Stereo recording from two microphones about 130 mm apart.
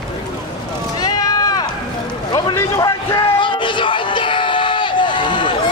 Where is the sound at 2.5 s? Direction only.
25° left (ahead or behind).